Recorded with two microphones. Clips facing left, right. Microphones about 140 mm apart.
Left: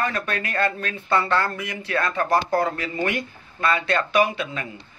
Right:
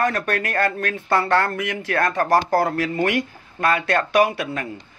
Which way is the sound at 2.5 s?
70° right (ahead or behind).